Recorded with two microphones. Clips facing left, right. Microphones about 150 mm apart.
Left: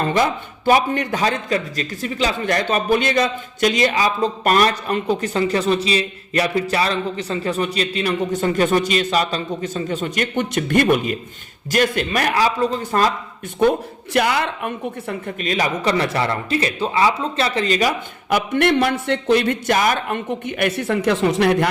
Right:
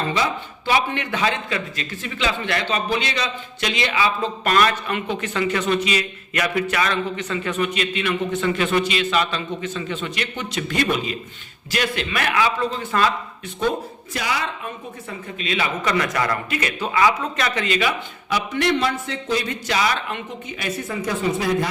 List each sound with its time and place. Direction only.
0.0 s a man's voice: 45° left (ahead or behind)
14.1 s a woman's voice: 60° left (ahead or behind)
15.4 s a man's voice: 40° left (ahead or behind); by 21.7 s 70° left (ahead or behind)